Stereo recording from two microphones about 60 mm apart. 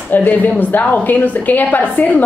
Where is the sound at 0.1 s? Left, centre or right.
Left.